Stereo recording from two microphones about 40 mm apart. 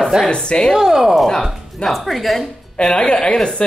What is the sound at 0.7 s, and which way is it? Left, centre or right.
Speech, centre.